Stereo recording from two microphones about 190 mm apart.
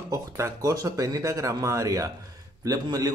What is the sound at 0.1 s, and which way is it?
Speech, 15° right (ahead or behind).